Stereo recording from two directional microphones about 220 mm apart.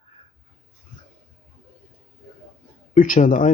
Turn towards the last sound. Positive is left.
turn(degrees=35)  # may be behind; listen again after turning